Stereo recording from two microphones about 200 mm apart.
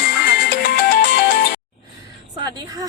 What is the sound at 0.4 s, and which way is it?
Music, 50° left (ahead or behind).